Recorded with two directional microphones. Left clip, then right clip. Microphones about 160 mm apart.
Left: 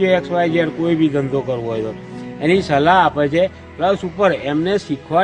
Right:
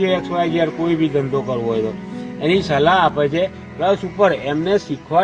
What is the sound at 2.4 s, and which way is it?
A man's voice, 45° left (ahead or behind).